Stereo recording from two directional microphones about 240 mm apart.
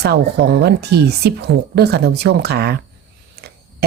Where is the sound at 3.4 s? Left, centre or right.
Right.